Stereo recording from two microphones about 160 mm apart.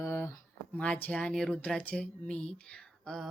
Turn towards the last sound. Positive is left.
turn(degrees=5)  # may be behind; listen again after turning